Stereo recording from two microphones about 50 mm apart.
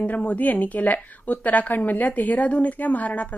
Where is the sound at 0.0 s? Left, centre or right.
Left.